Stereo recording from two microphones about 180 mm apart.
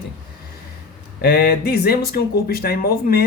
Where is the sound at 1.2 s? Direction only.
65° left (ahead or behind).